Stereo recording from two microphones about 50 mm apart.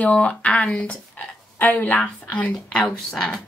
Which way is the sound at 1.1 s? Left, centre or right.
Left.